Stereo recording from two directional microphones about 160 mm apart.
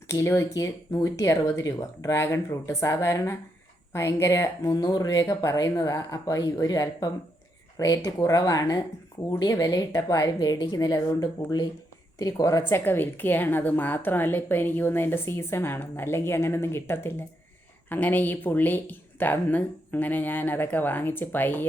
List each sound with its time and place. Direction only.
0.1 s a woman's voice: 15° left (ahead or behind)